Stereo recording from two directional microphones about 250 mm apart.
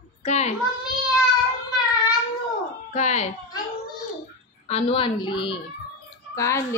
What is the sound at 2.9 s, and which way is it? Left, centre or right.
Speech, left.